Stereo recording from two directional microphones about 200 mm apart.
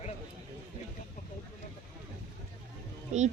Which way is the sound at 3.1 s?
35° right (ahead or behind).